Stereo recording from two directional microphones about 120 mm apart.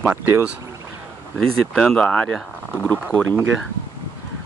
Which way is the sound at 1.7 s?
5° left (ahead or behind).